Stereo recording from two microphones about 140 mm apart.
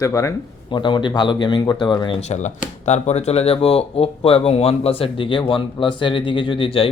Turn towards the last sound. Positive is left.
turn(degrees=40)  # may be behind; listen again after turning